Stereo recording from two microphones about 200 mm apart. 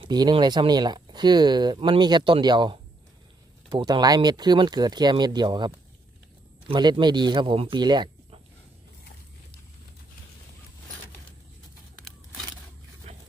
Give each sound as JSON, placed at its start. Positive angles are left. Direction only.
{"t": 0.0, "sound": "speech", "side_deg": -20}
{"t": 6.7, "sound": "speech", "side_deg": -20}